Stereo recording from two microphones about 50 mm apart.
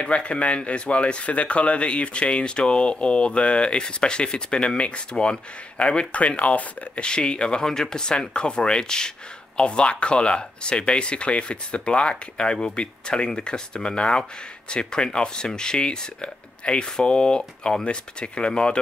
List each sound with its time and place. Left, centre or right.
0.0 s speech: left